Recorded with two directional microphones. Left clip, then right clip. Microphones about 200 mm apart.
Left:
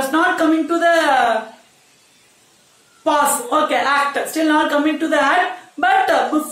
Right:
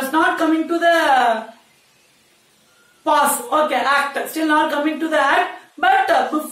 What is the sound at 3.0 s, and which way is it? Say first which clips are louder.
A woman's voice: even; 25° left (ahead or behind).